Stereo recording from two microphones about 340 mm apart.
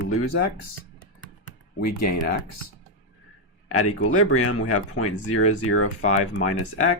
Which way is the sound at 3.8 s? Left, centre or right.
Left.